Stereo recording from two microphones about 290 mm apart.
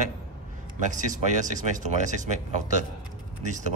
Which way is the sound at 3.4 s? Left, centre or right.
Right.